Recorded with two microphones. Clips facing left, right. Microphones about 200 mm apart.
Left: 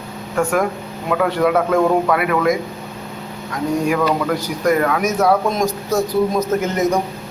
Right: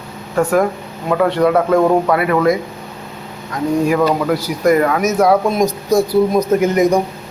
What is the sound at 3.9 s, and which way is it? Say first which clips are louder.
A man's voice: right 3 dB; 5° right (ahead or behind).